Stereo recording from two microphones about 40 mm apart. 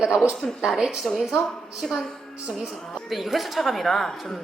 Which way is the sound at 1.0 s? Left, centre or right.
Centre.